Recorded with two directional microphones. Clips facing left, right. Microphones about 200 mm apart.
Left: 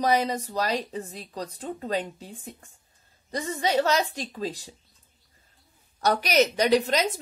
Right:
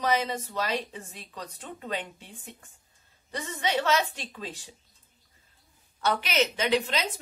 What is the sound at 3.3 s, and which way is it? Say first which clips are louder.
A woman's voice: left 5 dB; 35° left (ahead or behind).